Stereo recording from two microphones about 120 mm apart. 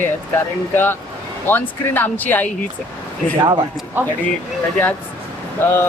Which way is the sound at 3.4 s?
40° right (ahead or behind).